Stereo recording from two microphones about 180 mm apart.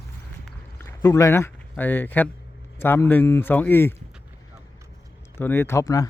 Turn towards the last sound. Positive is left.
turn(degrees=15)  # may be behind; listen again after turning